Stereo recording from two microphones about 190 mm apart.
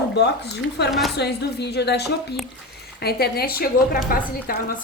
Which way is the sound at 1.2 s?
60° left (ahead or behind).